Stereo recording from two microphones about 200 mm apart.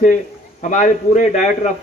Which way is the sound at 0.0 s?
40° left (ahead or behind).